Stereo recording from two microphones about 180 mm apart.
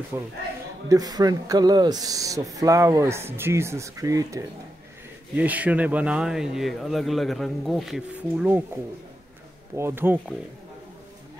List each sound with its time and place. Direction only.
0.1 s speech: 15° right (ahead or behind)
9.8 s speech: 15° right (ahead or behind)